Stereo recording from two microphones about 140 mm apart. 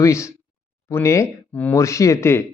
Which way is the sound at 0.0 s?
20° left (ahead or behind).